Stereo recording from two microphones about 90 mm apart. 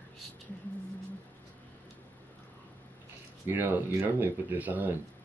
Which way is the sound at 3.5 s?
20° right (ahead or behind).